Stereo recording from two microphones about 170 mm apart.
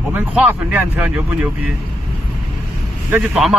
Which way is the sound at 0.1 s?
10° right (ahead or behind).